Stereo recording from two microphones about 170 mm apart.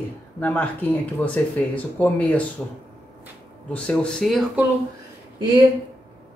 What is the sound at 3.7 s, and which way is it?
Speech, 5° left (ahead or behind).